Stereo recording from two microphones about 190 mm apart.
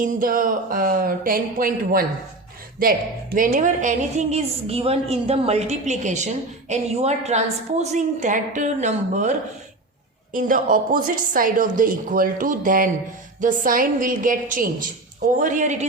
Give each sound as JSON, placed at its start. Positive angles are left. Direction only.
{"t": 0.0, "sound": "a woman's voice", "side_deg": -45}